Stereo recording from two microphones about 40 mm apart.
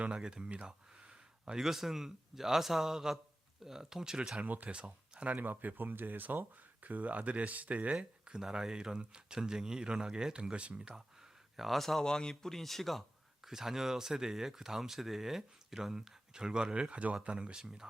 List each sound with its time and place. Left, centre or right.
0.0 s speech: right
0.7 s a sound: right
1.5 s speech: centre
4.4 s speech: right
4.7 s speech: right
5.3 s speech: right
6.8 s speech: right
7.9 s speech: centre
11.5 s speech: centre
12.0 s speech: centre
13.5 s speech: centre
16.9 s speech: right
17.2 s speech: right
17.6 s speech: centre